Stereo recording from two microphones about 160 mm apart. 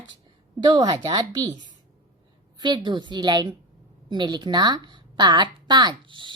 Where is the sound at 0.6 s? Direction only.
25° right (ahead or behind).